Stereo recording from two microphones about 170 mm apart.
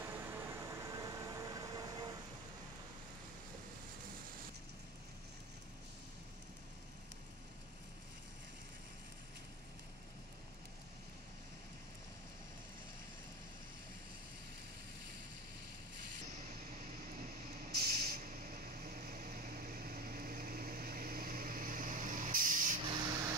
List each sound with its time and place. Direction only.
0.0 s train: 10° right (ahead or behind)
17.6 s vehicle: 65° right (ahead or behind)